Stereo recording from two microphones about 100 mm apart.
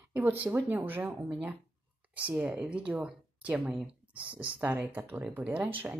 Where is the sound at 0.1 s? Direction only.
20° right (ahead or behind).